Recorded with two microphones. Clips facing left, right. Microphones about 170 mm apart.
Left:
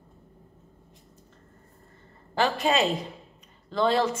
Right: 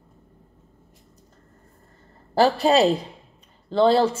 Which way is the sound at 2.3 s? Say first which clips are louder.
Right 7 dB; 35° right (ahead or behind).